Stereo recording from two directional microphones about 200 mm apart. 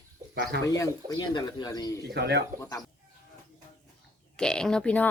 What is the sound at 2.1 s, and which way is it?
Speech, 55° right (ahead or behind).